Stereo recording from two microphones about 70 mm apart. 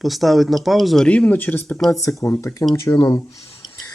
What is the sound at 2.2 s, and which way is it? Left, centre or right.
Speech, left.